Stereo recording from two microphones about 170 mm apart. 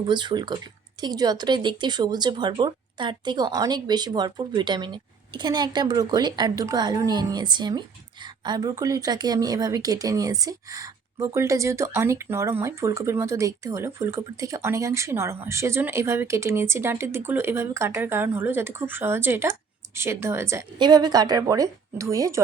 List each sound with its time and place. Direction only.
0.1 s a woman's voice: 25° right (ahead or behind)